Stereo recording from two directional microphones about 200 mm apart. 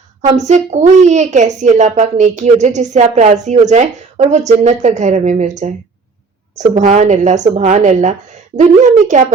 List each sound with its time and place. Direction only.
0.2 s a woman's voice: 35° right (ahead or behind)